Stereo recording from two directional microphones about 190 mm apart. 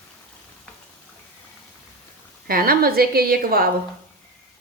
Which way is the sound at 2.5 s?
50° right (ahead or behind).